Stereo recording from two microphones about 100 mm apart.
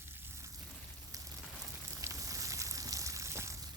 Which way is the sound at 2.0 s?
30° right (ahead or behind).